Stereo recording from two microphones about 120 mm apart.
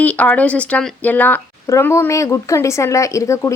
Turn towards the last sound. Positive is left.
turn(degrees=25)  # may be behind; listen again after turning